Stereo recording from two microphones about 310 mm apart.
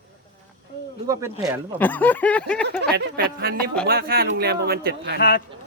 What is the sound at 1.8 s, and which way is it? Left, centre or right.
A man's voice, centre.